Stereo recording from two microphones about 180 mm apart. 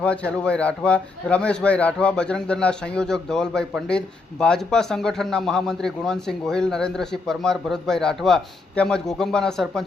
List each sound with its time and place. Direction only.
0.0 s a man's voice: 5° left (ahead or behind)